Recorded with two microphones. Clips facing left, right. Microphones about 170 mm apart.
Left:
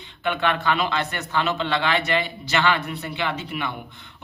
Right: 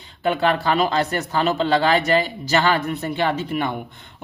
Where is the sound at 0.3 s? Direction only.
35° right (ahead or behind).